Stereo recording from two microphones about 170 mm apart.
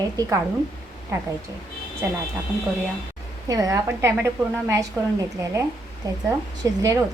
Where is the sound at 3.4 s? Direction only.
20° right (ahead or behind).